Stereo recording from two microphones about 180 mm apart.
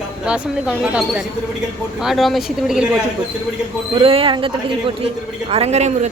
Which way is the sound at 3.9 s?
30° right (ahead or behind).